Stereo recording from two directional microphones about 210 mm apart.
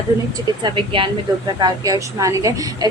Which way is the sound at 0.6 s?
25° right (ahead or behind).